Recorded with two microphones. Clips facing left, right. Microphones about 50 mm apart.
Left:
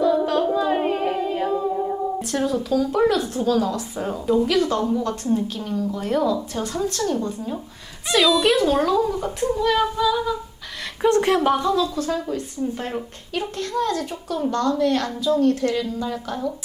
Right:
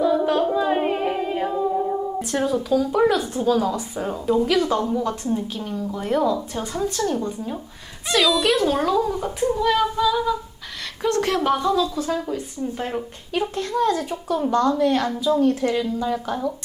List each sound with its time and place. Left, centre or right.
0.0 s singing: centre
2.3 s speech: centre
8.1 s a child's voice: centre
11.0 s speech: left
11.4 s speech: centre